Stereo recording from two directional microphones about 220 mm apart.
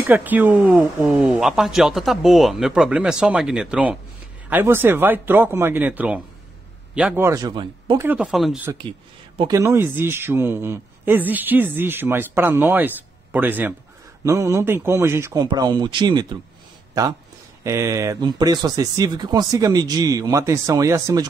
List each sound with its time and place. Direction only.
0.0 s a man's voice: 10° right (ahead or behind)
8.1 s speech: 5° right (ahead or behind)
9.4 s a man's voice: 15° right (ahead or behind)
17.6 s a man's voice: 15° right (ahead or behind)